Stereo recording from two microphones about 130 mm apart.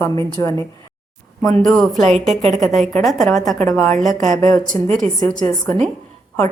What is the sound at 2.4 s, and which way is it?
Speech, 65° right (ahead or behind).